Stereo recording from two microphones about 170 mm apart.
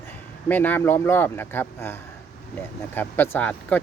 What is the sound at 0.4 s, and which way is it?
Speech, 10° left (ahead or behind).